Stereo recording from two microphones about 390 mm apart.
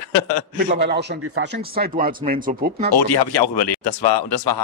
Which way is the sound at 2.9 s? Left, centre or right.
Left.